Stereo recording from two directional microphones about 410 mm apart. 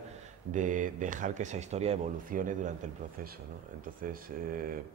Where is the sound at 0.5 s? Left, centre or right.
Centre.